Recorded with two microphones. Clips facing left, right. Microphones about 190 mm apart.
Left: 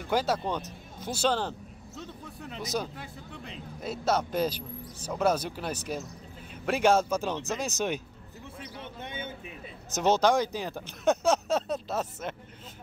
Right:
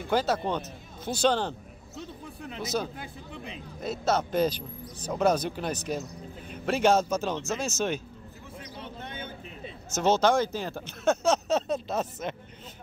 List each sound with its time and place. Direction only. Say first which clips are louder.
0.1 s speech: right 1 dB; 10° left (ahead or behind)
2.6 s speech: right 2 dB; 15° left (ahead or behind)
8.8 s a sound: left 1 dB; 20° left (ahead or behind)
9.9 s speech: right 1 dB; 15° left (ahead or behind)